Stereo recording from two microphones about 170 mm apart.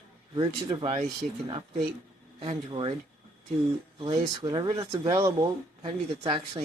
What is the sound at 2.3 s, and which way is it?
Speech, 30° right (ahead or behind).